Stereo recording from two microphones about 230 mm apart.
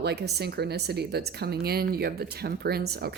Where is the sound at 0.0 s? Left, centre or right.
Right.